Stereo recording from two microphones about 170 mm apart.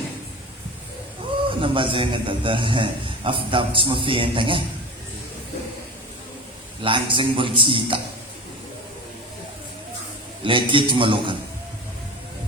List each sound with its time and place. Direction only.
1.5 s a man's voice: 30° right (ahead or behind)
6.8 s a man's voice: 30° right (ahead or behind)
10.4 s a man's voice: 30° right (ahead or behind)